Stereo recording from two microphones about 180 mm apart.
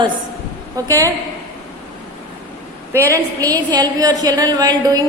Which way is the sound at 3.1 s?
20° right (ahead or behind).